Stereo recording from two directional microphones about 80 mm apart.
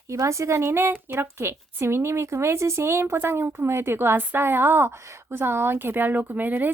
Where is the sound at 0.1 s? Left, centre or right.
Right.